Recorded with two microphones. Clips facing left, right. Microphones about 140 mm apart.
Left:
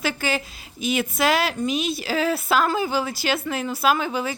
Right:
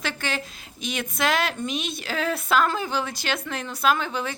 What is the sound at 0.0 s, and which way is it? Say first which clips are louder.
Speech: left 4 dB; 5° left (ahead or behind).